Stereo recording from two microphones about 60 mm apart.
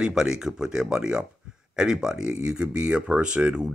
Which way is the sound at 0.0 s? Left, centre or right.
Centre.